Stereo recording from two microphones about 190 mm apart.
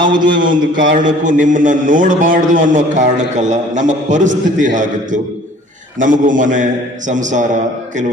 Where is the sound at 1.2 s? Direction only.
45° right (ahead or behind).